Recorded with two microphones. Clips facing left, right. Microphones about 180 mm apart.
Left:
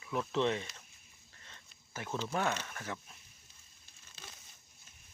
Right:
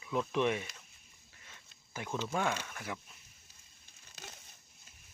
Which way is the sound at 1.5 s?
15° right (ahead or behind).